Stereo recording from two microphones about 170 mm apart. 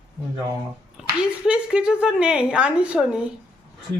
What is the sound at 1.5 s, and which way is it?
A woman's voice, 5° right (ahead or behind).